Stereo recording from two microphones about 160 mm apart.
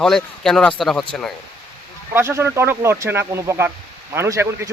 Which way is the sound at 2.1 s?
15° right (ahead or behind).